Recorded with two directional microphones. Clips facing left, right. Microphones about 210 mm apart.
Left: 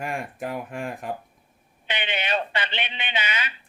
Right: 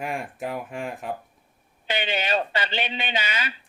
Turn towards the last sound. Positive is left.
turn(degrees=-40)  # may be behind; listen again after turning